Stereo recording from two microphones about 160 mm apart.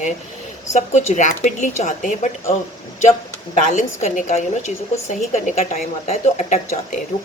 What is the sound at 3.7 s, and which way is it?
A woman's voice, 50° left (ahead or behind).